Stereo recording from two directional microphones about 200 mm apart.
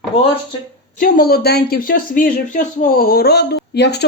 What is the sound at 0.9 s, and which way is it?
Speech, 45° left (ahead or behind).